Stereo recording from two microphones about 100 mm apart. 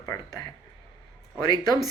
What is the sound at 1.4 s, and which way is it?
Speech, 40° left (ahead or behind).